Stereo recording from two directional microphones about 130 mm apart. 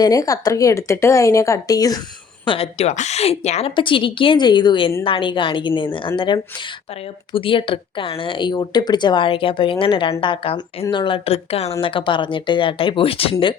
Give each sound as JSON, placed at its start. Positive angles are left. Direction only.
{"t": 0.0, "sound": "a woman's voice", "side_deg": 25}
{"t": 2.4, "sound": "a woman's voice", "side_deg": 45}
{"t": 3.8, "sound": "speech", "side_deg": 40}